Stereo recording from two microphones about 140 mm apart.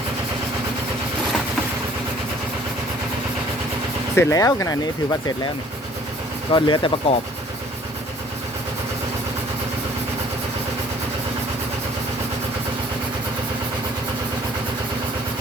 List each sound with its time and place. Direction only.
4.1 s speech: 20° left (ahead or behind)
6.5 s speech: 35° left (ahead or behind)